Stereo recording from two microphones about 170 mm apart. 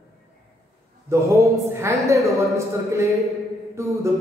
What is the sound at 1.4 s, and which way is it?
Speech, 15° right (ahead or behind).